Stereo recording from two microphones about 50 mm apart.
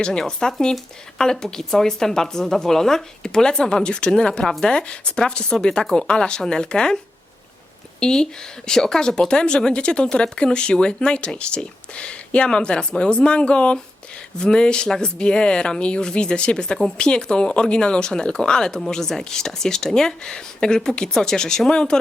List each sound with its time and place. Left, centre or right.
0.0 s speech: centre